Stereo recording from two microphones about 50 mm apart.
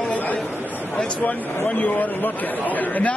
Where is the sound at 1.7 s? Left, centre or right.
Left.